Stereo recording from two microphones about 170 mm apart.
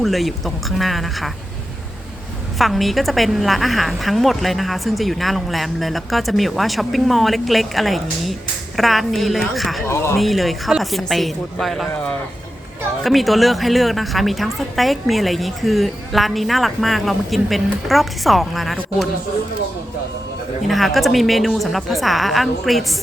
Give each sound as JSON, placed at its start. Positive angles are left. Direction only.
{"t": 0.0, "sound": "a woman's voice", "side_deg": 0}
{"t": 2.6, "sound": "a woman's voice", "side_deg": 0}
{"t": 9.8, "sound": "speech", "side_deg": 15}
{"t": 10.2, "sound": "a woman's voice", "side_deg": 0}
{"t": 20.7, "sound": "a woman's voice", "side_deg": 0}